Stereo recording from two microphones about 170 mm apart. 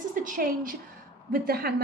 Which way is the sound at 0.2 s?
55° right (ahead or behind).